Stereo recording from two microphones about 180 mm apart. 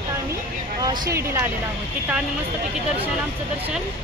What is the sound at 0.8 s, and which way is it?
Speech, 15° right (ahead or behind).